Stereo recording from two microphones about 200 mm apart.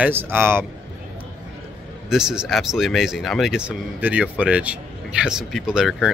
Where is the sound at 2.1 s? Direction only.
5° right (ahead or behind).